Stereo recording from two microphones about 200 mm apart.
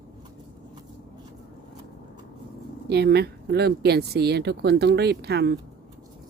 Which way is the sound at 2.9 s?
55° right (ahead or behind).